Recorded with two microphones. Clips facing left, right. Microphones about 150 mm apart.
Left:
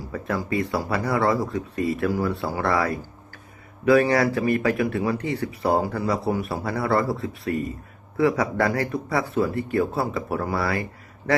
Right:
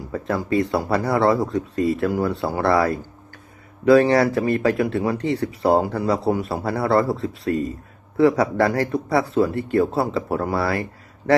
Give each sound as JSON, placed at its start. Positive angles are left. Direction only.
{"t": 0.1, "sound": "speech", "side_deg": -25}